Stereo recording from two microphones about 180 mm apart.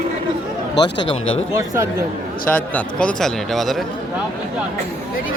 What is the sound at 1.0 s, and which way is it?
Speech, 90° left.